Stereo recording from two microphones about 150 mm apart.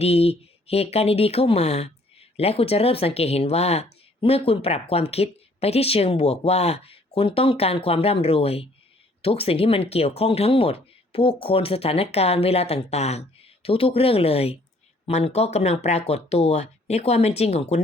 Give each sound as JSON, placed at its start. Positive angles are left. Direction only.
{"t": 0.0, "sound": "speech", "side_deg": 40}